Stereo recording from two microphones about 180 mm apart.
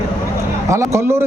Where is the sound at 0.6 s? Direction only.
15° right (ahead or behind).